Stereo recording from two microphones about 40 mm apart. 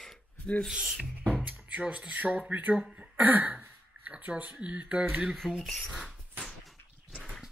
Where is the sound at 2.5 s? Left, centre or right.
Right.